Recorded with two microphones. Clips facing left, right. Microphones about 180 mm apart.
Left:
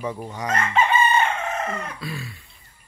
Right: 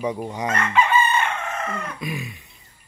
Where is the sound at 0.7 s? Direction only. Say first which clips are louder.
Even; 35° left (ahead or behind).